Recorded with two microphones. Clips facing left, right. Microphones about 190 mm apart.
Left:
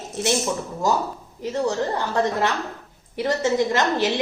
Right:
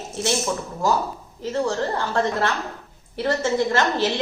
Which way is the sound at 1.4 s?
15° left (ahead or behind).